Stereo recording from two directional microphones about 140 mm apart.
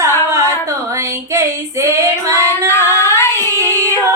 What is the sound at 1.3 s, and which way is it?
Female singing, 20° right (ahead or behind).